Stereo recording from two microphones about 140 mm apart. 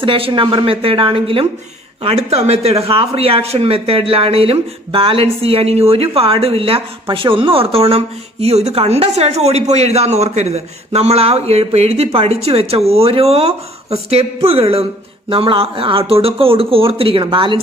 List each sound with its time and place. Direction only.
0.0 s speech: 40° right (ahead or behind)